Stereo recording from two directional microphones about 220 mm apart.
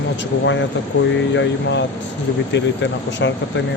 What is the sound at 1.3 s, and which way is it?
Speech, 55° left (ahead or behind).